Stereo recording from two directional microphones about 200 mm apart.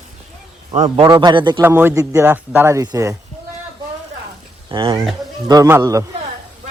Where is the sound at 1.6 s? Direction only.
10° right (ahead or behind).